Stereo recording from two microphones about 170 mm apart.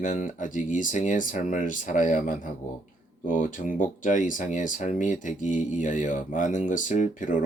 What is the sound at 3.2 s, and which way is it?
Speech, 50° left (ahead or behind).